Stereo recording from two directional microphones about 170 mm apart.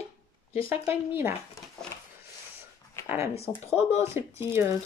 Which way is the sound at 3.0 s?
15° right (ahead or behind).